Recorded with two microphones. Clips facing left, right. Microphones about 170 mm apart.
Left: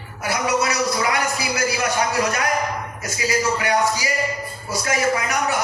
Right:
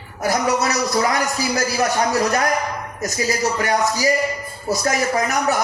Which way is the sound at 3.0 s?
40° right (ahead or behind).